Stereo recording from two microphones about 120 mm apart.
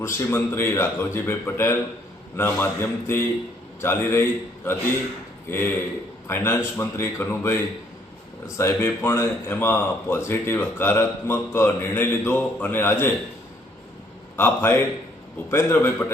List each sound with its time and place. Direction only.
0.0 s a man's voice: 20° left (ahead or behind)
14.3 s speech: 20° left (ahead or behind)